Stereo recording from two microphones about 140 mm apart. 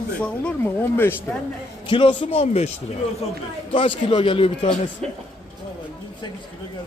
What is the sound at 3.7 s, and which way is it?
A man's voice, 40° left (ahead or behind).